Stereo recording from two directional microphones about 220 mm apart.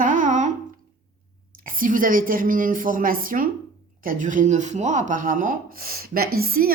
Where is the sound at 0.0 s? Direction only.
35° right (ahead or behind).